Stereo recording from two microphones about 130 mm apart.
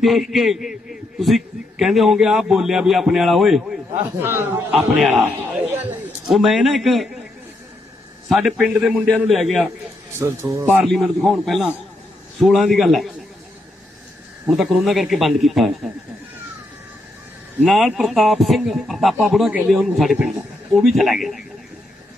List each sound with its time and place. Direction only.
0.0 s a man's voice: centre (ahead or behind)
4.0 s a man's voice: 15° right (ahead or behind); by 7.1 s centre (ahead or behind)
8.3 s a man's voice: centre (ahead or behind)
10.1 s a man's voice: 20° right (ahead or behind)
10.9 s a man's voice: centre (ahead or behind)
14.5 s a man's voice: centre (ahead or behind)
17.6 s a man's voice: centre (ahead or behind)